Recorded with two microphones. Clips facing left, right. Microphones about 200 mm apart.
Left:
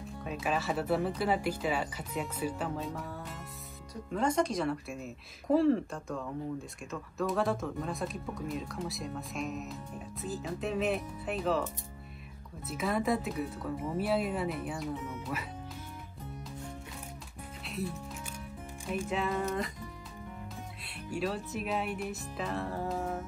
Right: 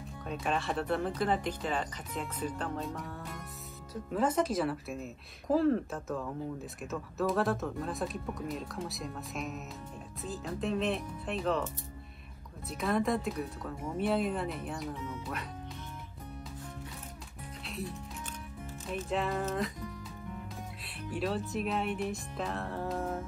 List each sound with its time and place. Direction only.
0.2 s speech: 5° left (ahead or behind)
12.6 s speech: centre (ahead or behind)
18.9 s speech: 5° left (ahead or behind)
21.1 s speech: centre (ahead or behind)